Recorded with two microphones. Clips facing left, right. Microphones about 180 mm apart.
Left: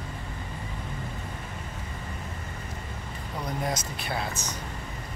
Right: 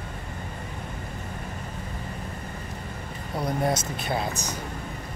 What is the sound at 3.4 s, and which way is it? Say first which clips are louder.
Speech: right 5 dB; 30° right (ahead or behind).